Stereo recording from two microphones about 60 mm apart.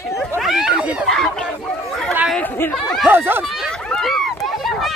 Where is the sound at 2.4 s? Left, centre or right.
Left.